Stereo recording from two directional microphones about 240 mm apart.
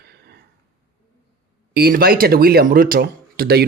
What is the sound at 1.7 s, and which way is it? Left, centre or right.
Speech, right.